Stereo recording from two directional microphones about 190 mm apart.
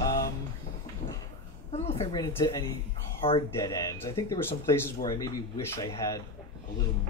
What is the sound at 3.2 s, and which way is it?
Speech, 30° left (ahead or behind).